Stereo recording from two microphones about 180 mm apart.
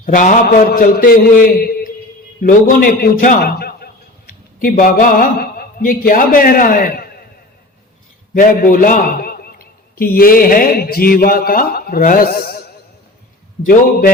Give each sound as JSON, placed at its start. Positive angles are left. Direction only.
{"t": 0.0, "sound": "a man's voice", "side_deg": 45}
{"t": 8.3, "sound": "a man's voice", "side_deg": 50}